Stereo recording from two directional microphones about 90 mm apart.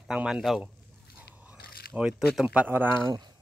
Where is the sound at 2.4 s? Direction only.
20° right (ahead or behind).